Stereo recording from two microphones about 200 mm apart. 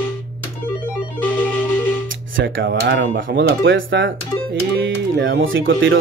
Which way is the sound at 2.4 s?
65° right (ahead or behind).